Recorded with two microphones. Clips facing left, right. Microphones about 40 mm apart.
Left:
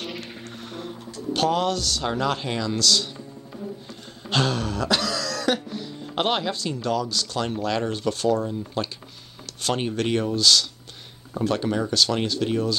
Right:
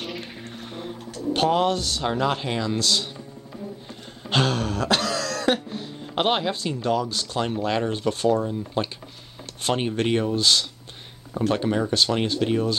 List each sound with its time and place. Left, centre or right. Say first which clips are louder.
1.3 s speech: right 2 dB; right
4.3 s throat clearing: right 1 dB; right
6.0 s speech: right 1 dB; centre